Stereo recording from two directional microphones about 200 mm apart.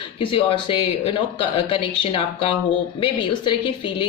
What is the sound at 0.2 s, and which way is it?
Speech, 25° left (ahead or behind).